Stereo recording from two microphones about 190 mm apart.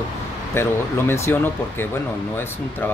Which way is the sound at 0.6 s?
10° left (ahead or behind).